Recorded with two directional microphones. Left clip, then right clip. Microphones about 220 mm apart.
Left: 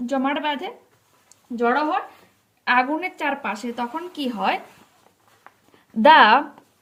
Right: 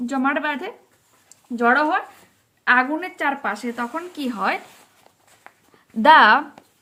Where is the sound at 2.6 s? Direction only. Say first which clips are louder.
Right 2 dB; 15° right (ahead or behind).